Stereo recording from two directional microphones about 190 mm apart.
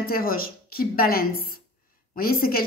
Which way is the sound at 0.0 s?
50° left (ahead or behind).